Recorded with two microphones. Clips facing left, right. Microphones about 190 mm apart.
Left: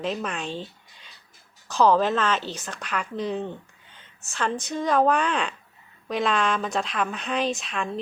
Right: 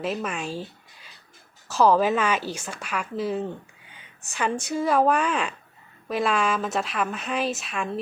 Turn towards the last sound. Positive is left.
turn(degrees=-5)  # may be behind; listen again after turning